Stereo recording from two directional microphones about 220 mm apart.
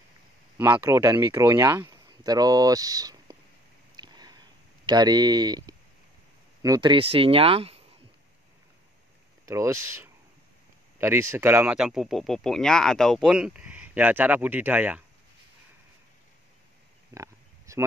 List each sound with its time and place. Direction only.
0.6 s speech: 10° right (ahead or behind)
3.9 s a sound: 20° right (ahead or behind)
6.6 s speech: 20° right (ahead or behind)
9.5 s speech: 15° right (ahead or behind)
17.1 s oink: 15° right (ahead or behind)